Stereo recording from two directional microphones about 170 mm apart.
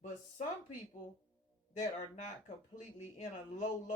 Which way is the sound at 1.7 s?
45° left (ahead or behind).